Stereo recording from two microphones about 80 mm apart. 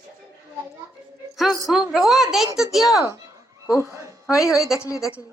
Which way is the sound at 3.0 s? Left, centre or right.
Right.